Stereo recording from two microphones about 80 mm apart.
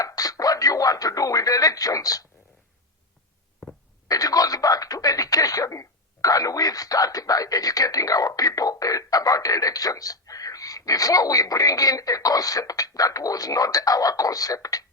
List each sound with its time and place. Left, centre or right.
0.0 s radio: left
4.1 s speech: left